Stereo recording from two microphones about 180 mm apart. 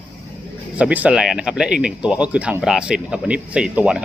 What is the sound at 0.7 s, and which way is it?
Speech, 5° right (ahead or behind).